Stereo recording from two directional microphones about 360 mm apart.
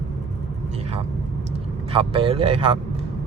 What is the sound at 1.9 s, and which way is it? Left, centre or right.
Speech, centre.